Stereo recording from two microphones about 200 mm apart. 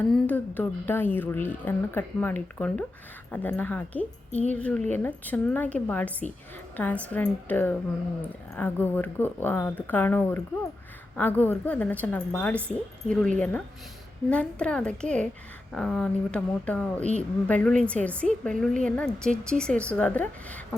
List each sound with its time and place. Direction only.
0.1 s a woman's voice: 10° left (ahead or behind)